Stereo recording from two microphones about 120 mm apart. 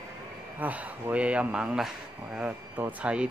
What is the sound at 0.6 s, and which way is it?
A man's voice, 10° right (ahead or behind).